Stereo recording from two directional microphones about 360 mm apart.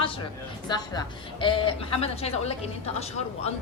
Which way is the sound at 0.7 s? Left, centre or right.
Centre.